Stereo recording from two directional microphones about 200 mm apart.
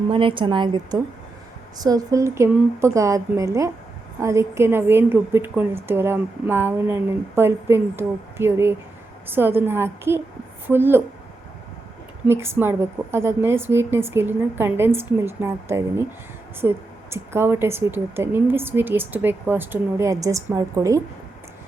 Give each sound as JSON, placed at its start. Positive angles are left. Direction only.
{"t": 0.1, "sound": "a woman's voice", "side_deg": -25}
{"t": 12.3, "sound": "a woman's voice", "side_deg": -10}